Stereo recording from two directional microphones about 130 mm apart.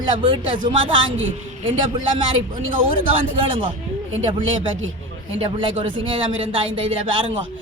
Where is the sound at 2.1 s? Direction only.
40° right (ahead or behind).